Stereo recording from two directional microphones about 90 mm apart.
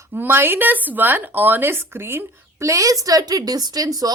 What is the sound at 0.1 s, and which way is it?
A woman's voice, 25° right (ahead or behind).